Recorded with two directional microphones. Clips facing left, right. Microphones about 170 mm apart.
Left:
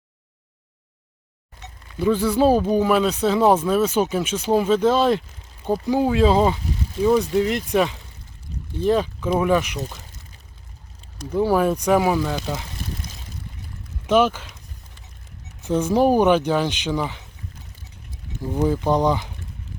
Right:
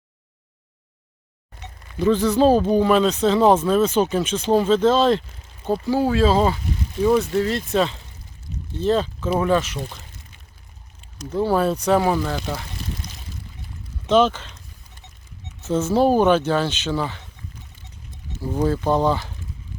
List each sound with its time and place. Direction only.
2.0 s speech: 10° left (ahead or behind)
11.3 s speech: 10° left (ahead or behind)
14.1 s speech: 10° left (ahead or behind)
15.6 s speech: 15° left (ahead or behind)
18.3 s speech: 15° left (ahead or behind)